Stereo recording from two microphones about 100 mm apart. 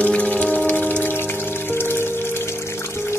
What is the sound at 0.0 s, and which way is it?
Music, 10° left (ahead or behind).